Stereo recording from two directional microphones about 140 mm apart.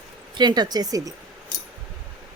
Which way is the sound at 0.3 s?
30° right (ahead or behind).